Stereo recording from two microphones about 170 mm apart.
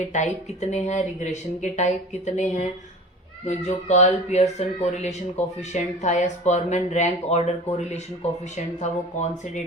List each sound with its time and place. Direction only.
0.0 s speech: 45° left (ahead or behind)